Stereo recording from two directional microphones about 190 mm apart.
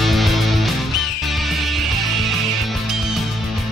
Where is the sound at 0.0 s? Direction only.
Centre (ahead or behind).